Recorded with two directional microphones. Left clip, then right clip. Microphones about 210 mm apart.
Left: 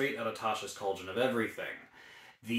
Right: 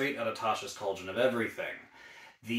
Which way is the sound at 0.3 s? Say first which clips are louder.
Right 3 dB; 10° left (ahead or behind).